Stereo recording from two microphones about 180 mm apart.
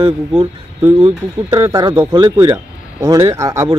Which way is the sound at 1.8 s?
25° right (ahead or behind).